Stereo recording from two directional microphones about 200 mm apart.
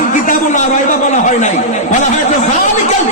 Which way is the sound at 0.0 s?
40° left (ahead or behind).